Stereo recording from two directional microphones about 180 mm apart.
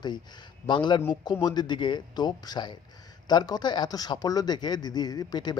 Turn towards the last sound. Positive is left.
turn(degrees=20)  # may be behind; listen again after turning